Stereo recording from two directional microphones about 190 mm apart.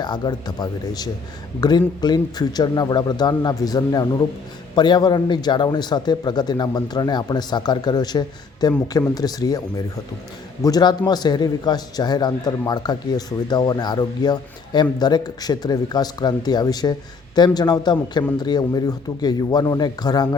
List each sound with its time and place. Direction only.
0.0 s a man's voice: 20° left (ahead or behind)